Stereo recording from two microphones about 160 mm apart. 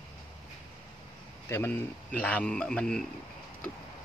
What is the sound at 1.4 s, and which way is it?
Speech, 15° left (ahead or behind).